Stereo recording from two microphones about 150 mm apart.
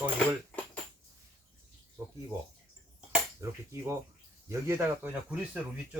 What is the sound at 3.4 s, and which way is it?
Speech, 20° right (ahead or behind).